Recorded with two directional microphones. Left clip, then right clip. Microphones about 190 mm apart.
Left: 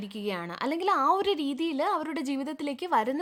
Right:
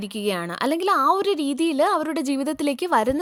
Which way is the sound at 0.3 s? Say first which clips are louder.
Right 8 dB; 30° right (ahead or behind).